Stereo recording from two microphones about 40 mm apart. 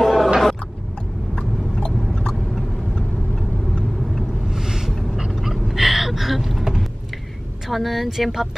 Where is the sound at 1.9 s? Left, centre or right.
Centre.